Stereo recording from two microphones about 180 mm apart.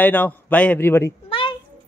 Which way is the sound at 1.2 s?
30° left (ahead or behind).